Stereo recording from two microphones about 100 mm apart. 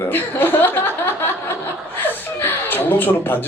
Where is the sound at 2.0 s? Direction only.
20° left (ahead or behind).